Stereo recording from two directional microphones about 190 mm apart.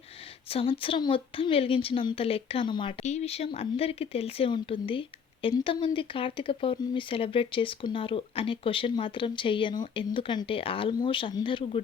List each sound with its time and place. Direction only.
0.4 s speech: 30° left (ahead or behind)
3.0 s speech: 35° left (ahead or behind)